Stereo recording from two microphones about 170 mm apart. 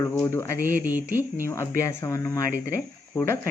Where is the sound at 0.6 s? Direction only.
10° right (ahead or behind).